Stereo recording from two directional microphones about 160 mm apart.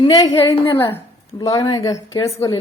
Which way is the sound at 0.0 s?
25° left (ahead or behind).